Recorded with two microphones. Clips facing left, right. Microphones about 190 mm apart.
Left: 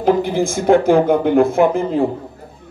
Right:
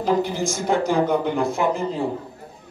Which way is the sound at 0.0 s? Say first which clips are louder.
Left 6 dB; 55° left (ahead or behind).